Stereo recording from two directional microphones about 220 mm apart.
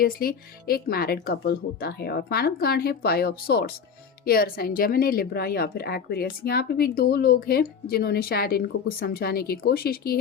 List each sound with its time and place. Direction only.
0.0 s speech: 40° left (ahead or behind)